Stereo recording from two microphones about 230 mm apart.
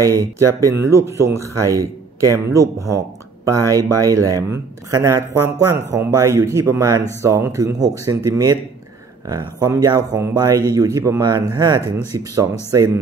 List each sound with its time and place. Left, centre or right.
0.0 s speech: centre
4.0 s speech: centre